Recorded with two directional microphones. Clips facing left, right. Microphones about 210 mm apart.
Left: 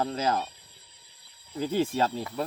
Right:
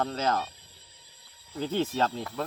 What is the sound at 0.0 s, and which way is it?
Speech, 10° left (ahead or behind).